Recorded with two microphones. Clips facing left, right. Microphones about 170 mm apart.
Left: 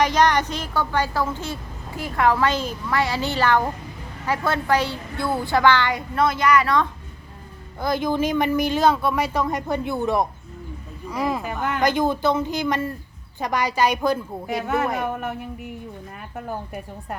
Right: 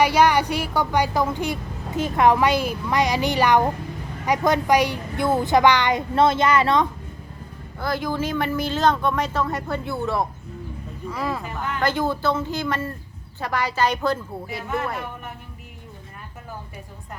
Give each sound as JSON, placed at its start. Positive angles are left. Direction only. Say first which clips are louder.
{"t": 0.0, "sound": "a woman's voice", "louder": "right 1 dB", "side_deg": -10}
{"t": 7.8, "sound": "speech", "louder": "left 3 dB", "side_deg": 20}